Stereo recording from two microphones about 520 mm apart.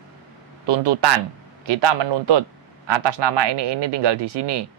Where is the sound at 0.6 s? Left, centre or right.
Right.